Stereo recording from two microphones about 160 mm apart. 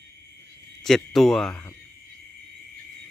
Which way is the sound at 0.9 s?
Centre (ahead or behind).